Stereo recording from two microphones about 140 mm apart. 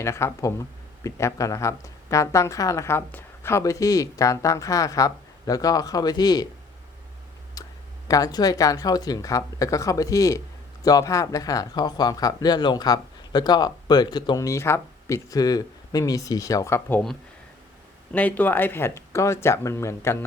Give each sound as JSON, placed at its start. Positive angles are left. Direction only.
{"t": 0.0, "sound": "speech", "side_deg": 20}
{"t": 7.6, "sound": "a sound", "side_deg": 25}
{"t": 8.0, "sound": "speech", "side_deg": 25}
{"t": 18.1, "sound": "speech", "side_deg": 10}